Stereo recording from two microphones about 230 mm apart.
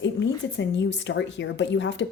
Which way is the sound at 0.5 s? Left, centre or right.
Left.